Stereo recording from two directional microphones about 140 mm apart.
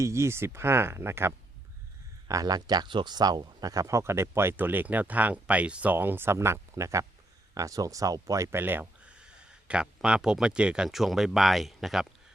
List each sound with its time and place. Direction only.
0.0 s speech: 20° right (ahead or behind); by 12.0 s centre (ahead or behind)